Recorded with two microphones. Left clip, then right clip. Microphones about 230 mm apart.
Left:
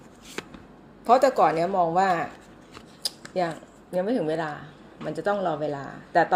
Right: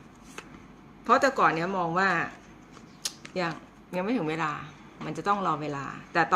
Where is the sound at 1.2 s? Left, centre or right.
Centre.